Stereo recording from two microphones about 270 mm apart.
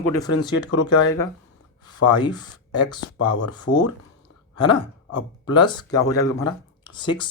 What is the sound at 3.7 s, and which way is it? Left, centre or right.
Speech, left.